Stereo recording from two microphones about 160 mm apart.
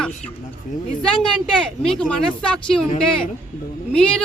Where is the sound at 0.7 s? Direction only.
50° left (ahead or behind).